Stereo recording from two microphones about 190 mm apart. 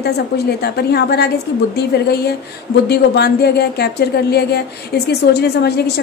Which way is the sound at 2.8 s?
60° left (ahead or behind).